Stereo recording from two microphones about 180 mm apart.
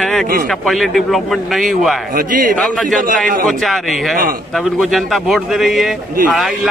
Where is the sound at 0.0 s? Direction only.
Centre (ahead or behind).